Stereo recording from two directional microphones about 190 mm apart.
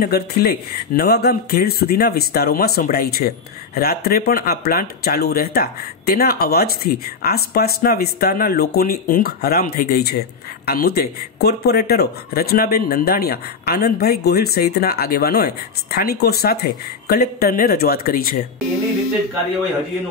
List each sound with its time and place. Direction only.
0.0 s speech: 55° left (ahead or behind)